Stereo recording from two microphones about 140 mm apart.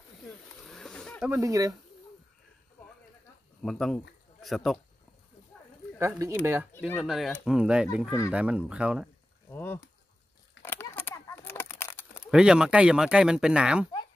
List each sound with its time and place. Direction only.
0.3 s snake: 5° left (ahead or behind)
1.3 s speech: 25° right (ahead or behind)
3.6 s speech: 5° left (ahead or behind)
5.9 s speech: 20° right (ahead or behind)
7.0 s speech: centre (ahead or behind)
9.5 s a sound: 15° left (ahead or behind)
12.3 s speech: 5° right (ahead or behind)